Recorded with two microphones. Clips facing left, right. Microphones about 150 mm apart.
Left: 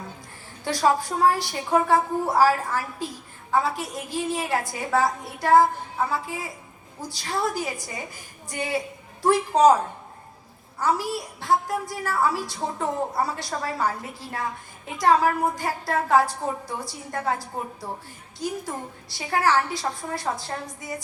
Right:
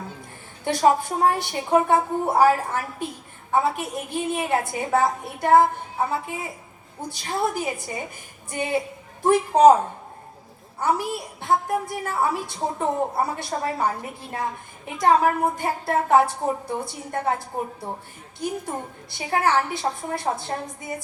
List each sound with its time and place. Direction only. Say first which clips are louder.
0.6 s a woman's voice: right 3 dB; 25° right (ahead or behind)
10.8 s a woman's voice: right 1 dB; 20° right (ahead or behind)